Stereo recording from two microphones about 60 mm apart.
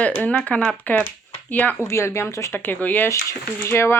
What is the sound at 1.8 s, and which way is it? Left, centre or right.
Speech, left.